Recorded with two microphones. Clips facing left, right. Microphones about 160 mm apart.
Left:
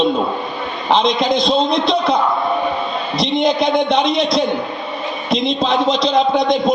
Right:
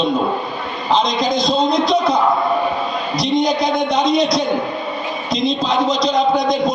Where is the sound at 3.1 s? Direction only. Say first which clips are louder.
Left 1 dB; 25° left (ahead or behind).